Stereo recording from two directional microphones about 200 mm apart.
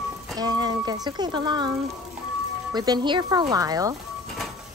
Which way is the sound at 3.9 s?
Centre (ahead or behind).